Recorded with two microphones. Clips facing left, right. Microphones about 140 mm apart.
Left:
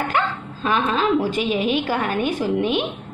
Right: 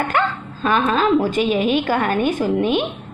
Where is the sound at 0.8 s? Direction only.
45° right (ahead or behind).